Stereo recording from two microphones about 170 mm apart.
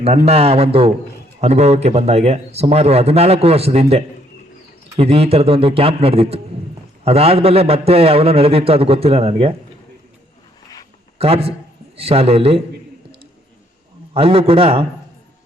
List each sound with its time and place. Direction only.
0.3 s a man's voice: 35° right (ahead or behind)
11.2 s a man's voice: 35° right (ahead or behind)
14.1 s a man's voice: 35° right (ahead or behind)